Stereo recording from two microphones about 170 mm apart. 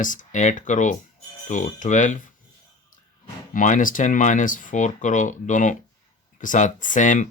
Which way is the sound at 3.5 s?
50° left (ahead or behind).